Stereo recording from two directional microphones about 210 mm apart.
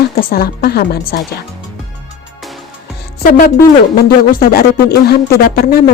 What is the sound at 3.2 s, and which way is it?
Speech, 45° left (ahead or behind).